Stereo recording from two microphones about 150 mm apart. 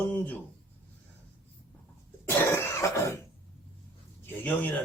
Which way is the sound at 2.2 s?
15° left (ahead or behind).